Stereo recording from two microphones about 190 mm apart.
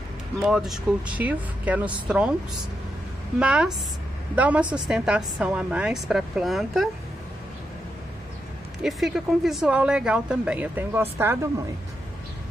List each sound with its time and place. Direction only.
0.5 s a woman's voice: 5° right (ahead or behind)
3.3 s a woman's voice: 5° right (ahead or behind)
8.8 s a woman's voice: centre (ahead or behind)